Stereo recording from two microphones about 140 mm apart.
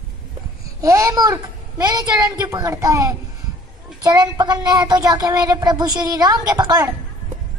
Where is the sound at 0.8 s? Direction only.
25° right (ahead or behind).